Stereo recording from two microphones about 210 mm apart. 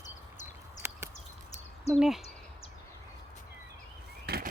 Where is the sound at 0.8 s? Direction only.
10° right (ahead or behind).